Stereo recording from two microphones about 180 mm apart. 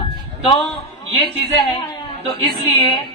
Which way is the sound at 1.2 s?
30° left (ahead or behind).